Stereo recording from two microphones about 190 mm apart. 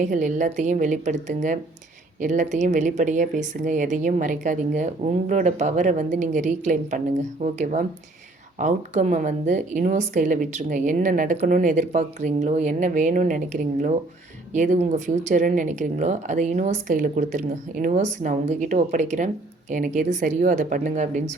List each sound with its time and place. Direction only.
0.0 s a woman's voice: 40° right (ahead or behind)